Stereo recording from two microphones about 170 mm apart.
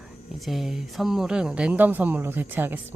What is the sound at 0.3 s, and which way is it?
Speech, centre (ahead or behind).